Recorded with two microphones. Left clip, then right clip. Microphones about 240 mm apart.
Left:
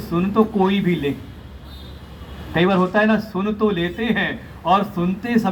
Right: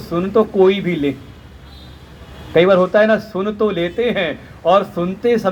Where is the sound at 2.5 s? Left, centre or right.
Right.